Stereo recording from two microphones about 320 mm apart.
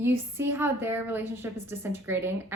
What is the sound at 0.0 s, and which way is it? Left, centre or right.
A woman's voice, centre.